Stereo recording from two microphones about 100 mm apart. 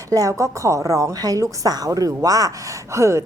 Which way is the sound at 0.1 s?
35° right (ahead or behind).